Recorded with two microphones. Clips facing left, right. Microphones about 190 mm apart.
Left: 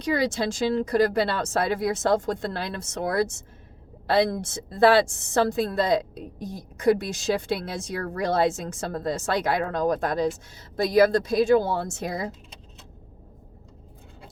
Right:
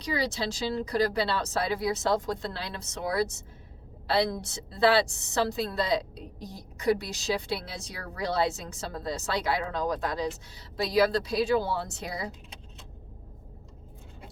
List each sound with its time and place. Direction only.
0.0 s a woman's voice: 50° left (ahead or behind)